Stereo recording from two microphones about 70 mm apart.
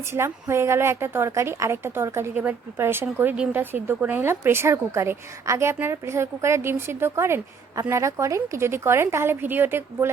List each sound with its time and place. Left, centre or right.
0.1 s a woman's voice: right
2.3 s a woman's voice: right
2.8 s a woman's voice: right